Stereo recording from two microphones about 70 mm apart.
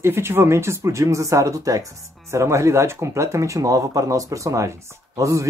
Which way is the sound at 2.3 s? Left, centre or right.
Right.